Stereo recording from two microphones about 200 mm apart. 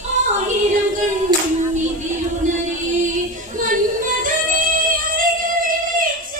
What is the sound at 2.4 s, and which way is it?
Female singing, 40° right (ahead or behind).